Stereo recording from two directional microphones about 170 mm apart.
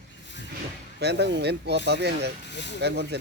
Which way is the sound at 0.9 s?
75° right (ahead or behind).